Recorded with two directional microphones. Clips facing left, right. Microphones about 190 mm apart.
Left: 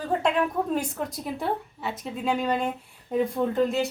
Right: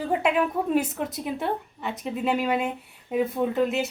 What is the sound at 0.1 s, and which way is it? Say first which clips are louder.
Speech: even; 5° right (ahead or behind).